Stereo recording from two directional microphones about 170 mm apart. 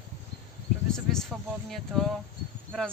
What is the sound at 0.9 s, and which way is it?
Speech, 5° left (ahead or behind).